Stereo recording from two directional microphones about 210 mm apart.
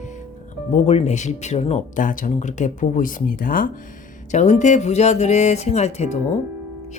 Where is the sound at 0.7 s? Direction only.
30° left (ahead or behind).